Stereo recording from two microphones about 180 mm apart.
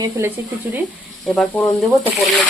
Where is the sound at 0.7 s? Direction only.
15° right (ahead or behind).